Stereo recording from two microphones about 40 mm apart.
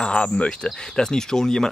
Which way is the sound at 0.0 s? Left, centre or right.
Left.